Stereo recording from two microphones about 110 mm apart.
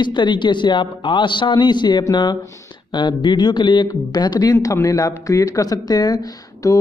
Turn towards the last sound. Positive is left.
turn(degrees=35)  # may be behind; listen again after turning